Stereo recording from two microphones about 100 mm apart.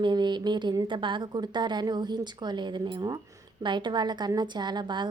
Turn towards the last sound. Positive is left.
turn(degrees=-50)  # may be behind; listen again after turning